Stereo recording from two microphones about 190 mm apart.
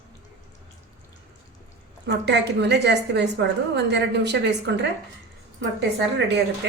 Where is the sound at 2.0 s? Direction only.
65° right (ahead or behind).